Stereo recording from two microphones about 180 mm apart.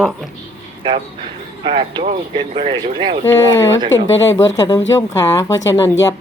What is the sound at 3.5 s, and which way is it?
Speech, 90° left.